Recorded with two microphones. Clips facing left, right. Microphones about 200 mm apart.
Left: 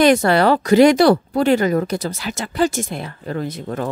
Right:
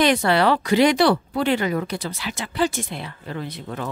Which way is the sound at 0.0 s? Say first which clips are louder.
Left 5 dB; 45° left (ahead or behind).